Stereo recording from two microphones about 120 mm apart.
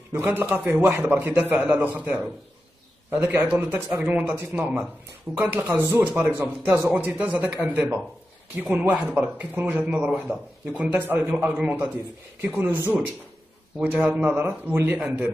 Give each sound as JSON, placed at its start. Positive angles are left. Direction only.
{"t": 0.1, "sound": "a man's voice", "side_deg": -15}
{"t": 5.3, "sound": "a man's voice", "side_deg": -5}
{"t": 5.7, "sound": "a man's voice", "side_deg": -20}
{"t": 15.0, "sound": "a man's voice", "side_deg": -5}